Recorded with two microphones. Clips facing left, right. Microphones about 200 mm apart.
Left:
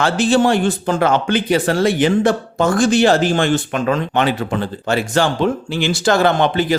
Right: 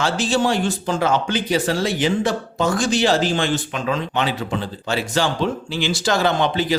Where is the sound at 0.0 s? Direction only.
55° left (ahead or behind).